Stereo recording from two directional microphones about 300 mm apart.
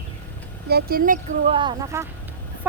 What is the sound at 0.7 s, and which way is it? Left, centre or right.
Speech, right.